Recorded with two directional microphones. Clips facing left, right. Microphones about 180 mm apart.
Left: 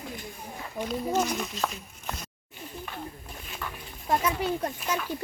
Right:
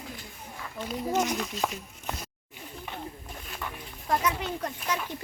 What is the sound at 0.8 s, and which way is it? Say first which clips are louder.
Speech: left 4 dB; 15° left (ahead or behind).